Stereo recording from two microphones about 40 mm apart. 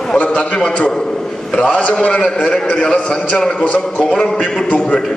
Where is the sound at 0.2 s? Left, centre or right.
Left.